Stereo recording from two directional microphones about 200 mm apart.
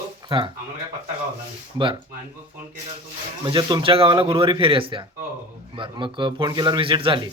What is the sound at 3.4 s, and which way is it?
Speech, 20° right (ahead or behind).